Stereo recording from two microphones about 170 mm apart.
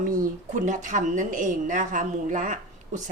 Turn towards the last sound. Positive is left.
turn(degrees=-50)  # may be behind; listen again after turning